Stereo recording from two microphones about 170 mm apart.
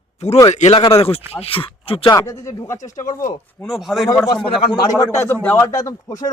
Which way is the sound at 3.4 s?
Centre (ahead or behind).